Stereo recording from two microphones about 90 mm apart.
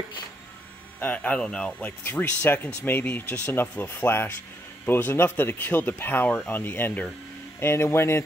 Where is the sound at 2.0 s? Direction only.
25° left (ahead or behind).